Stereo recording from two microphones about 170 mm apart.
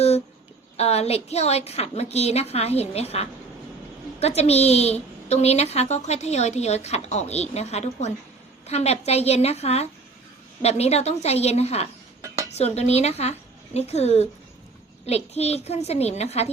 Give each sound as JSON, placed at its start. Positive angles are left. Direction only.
{"t": 0.8, "sound": "a woman's voice", "side_deg": 40}